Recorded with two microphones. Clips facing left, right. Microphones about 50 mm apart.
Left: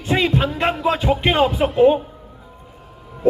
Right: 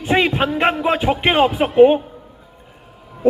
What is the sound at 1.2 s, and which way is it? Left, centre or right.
Music, centre.